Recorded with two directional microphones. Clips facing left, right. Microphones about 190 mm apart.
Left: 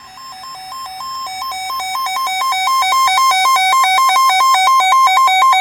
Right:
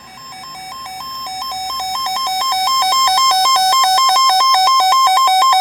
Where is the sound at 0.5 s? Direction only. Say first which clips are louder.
Even; 10° right (ahead or behind).